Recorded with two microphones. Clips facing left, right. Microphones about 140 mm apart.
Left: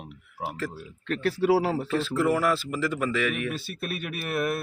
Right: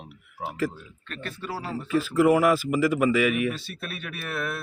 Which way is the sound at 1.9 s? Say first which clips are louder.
Right 4 dB; 10° right (ahead or behind).